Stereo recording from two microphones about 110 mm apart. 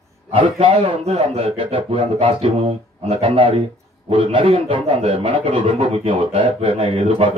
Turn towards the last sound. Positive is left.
turn(degrees=-55)  # may be behind; listen again after turning